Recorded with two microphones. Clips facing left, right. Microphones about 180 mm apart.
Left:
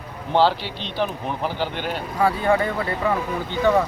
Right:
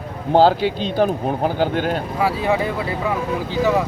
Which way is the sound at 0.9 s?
40° right (ahead or behind).